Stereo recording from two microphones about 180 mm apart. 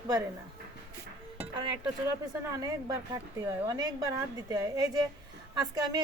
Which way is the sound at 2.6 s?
20° right (ahead or behind).